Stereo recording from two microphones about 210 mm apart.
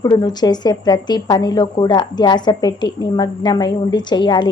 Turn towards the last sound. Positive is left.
turn(degrees=20)  # may be behind; listen again after turning